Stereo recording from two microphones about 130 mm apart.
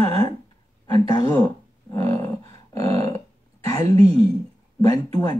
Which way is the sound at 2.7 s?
25° left (ahead or behind).